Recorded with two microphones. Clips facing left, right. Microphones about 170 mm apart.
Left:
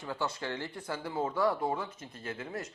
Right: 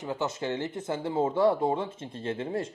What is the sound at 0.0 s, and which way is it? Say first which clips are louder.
Speech: right 5 dB; 20° right (ahead or behind).